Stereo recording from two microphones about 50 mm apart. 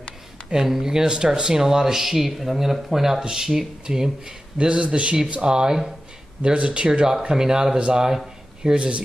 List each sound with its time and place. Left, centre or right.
0.5 s speech: centre
4.6 s speech: right